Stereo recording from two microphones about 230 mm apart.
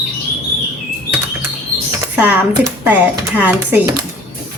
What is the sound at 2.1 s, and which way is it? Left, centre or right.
A woman's voice, centre.